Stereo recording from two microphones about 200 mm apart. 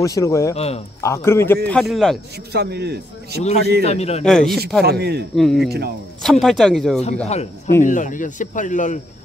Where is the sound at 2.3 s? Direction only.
55° right (ahead or behind).